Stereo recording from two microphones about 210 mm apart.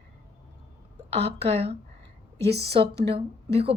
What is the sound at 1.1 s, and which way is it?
Speech, 30° right (ahead or behind).